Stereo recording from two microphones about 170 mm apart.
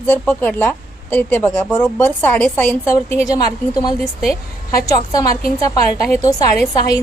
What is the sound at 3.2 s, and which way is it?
A woman's voice, 20° left (ahead or behind).